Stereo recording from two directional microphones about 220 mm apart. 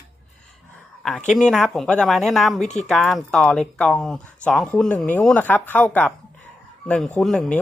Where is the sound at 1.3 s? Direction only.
Centre (ahead or behind).